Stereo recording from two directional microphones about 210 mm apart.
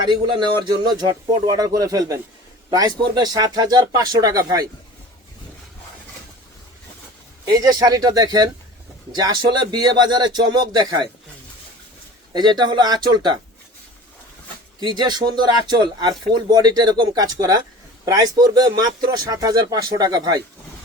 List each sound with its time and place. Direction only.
0.1 s speech: 20° right (ahead or behind)
7.4 s speech: 20° right (ahead or behind)
12.3 s speech: 20° right (ahead or behind)
14.8 s speech: 20° right (ahead or behind)